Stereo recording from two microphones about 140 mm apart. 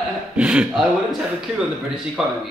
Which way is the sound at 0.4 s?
5° right (ahead or behind).